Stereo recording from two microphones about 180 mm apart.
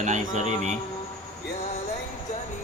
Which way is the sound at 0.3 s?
40° right (ahead or behind).